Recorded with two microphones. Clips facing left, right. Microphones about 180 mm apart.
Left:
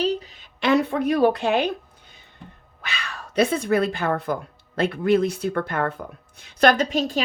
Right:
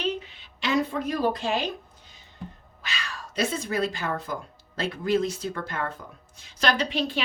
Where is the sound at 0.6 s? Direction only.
60° left (ahead or behind).